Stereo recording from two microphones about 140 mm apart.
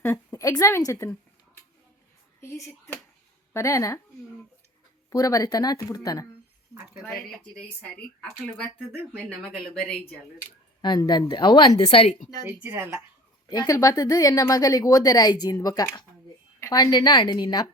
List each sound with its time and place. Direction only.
0.0 s a woman's voice: 15° left (ahead or behind)
2.4 s speech: 20° left (ahead or behind)
5.1 s speech: 25° left (ahead or behind)
7.0 s speech: 5° left (ahead or behind)
10.8 s a woman's voice: 30° left (ahead or behind)
12.5 s speech: 15° right (ahead or behind)
13.5 s a woman's voice: 25° left (ahead or behind)